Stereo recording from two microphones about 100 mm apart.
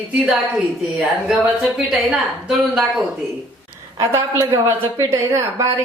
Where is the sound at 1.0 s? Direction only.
5° right (ahead or behind).